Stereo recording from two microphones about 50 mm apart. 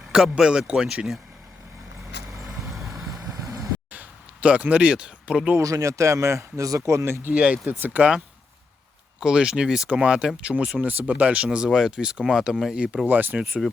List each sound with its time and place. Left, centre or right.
0.1 s speech: centre
2.8 s vehicle: centre
3.9 s a sound: right
5.5 s speech: right
7.1 s speech: right
7.3 s speech: right
7.7 s speech: right
9.2 s speech: centre
10.8 s speech: right
11.5 s speech: centre
12.7 s speech: right
13.1 s speech: right